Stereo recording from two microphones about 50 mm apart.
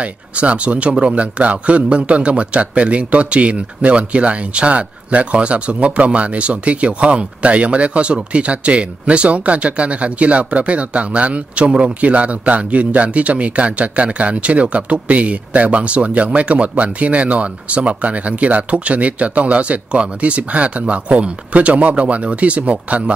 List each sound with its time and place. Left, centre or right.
0.0 s a man's voice: right